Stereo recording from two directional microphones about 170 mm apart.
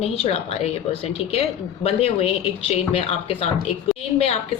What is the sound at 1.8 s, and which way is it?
A woman's voice, 35° left (ahead or behind).